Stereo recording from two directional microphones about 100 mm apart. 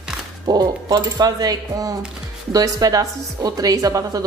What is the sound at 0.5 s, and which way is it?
A woman's voice, 40° right (ahead or behind).